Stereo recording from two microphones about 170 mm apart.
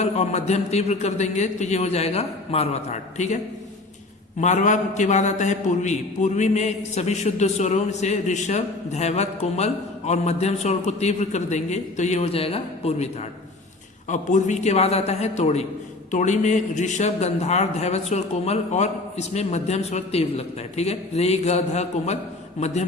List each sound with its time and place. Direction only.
0.0 s a man's voice: 40° left (ahead or behind)
4.4 s a man's voice: 45° left (ahead or behind)
14.1 s a man's voice: 45° left (ahead or behind)